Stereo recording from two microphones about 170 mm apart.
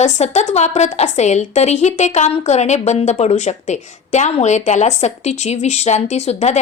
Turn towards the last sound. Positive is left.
turn(degrees=40)  # may be behind; listen again after turning